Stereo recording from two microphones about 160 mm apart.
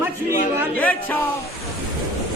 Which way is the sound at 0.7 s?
10° left (ahead or behind).